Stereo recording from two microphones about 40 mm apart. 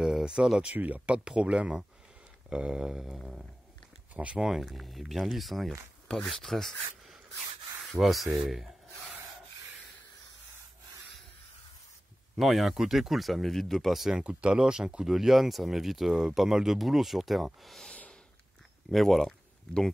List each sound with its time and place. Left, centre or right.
0.0 s a sound: centre
0.7 s speech: right
3.0 s a sound: centre
4.1 s speech: right
4.4 s speech: centre
12.4 s speech: centre
14.2 s speech: right
15.0 s speech: centre
16.1 s speech: centre
18.9 s speech: centre